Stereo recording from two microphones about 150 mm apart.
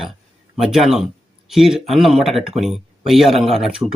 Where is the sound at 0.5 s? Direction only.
5° right (ahead or behind).